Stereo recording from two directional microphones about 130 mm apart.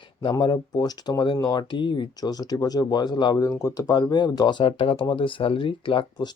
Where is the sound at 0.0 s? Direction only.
40° left (ahead or behind).